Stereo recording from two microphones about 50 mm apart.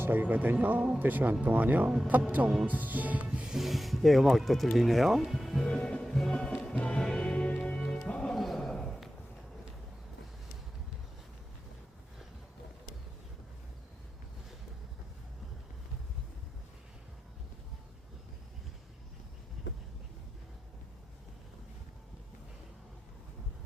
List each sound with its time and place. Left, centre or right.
0.0 s speech: right
3.4 s speech: centre
5.5 s music: centre
6.6 s music: left
7.8 s music: centre
8.0 s music: left
8.3 s a sound: centre